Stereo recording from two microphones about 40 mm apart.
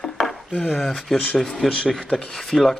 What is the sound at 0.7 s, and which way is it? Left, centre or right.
Speech, centre.